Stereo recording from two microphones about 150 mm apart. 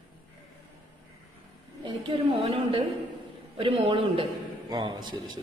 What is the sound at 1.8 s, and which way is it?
A woman's voice, 30° right (ahead or behind).